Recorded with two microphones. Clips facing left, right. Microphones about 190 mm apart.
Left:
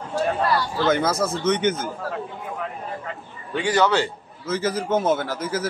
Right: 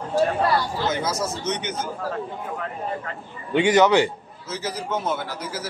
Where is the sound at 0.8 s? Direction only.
55° left (ahead or behind).